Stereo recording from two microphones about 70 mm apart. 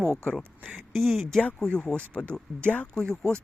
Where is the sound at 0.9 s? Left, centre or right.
Centre.